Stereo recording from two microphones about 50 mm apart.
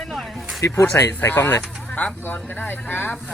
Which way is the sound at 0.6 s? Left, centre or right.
Left.